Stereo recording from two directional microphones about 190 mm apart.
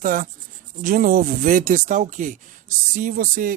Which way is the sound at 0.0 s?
45° right (ahead or behind).